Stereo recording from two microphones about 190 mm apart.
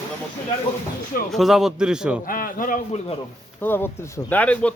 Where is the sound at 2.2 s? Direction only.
45° left (ahead or behind).